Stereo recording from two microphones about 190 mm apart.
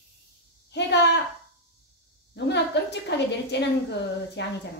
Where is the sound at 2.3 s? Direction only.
65° left (ahead or behind).